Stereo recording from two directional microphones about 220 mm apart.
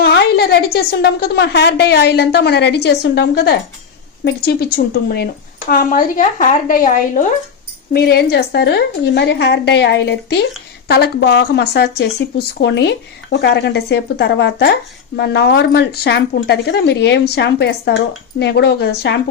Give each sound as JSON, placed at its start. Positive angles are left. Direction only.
{"t": 0.0, "sound": "a woman's voice", "side_deg": 45}